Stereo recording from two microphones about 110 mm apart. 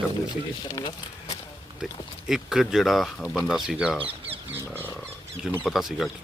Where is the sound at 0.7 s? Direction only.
35° left (ahead or behind).